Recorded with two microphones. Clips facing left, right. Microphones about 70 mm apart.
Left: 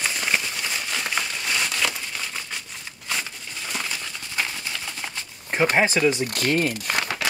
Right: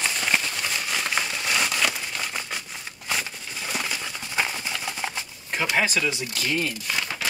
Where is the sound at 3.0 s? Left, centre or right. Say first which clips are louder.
Right 1 dB; centre.